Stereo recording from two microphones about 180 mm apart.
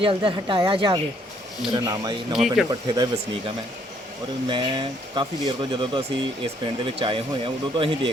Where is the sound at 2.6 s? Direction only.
25° right (ahead or behind).